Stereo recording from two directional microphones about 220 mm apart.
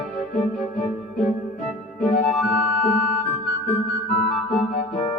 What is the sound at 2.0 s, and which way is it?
Music, 30° left (ahead or behind).